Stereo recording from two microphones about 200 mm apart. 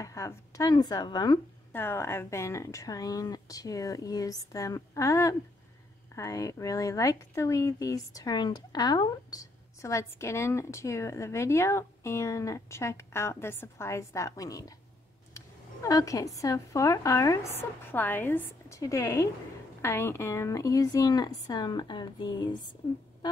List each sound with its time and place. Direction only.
0.0 s speech: 15° left (ahead or behind)
1.7 s speech: 10° left (ahead or behind)